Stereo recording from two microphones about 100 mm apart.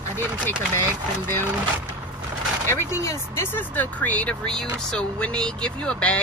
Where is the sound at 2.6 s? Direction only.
30° left (ahead or behind).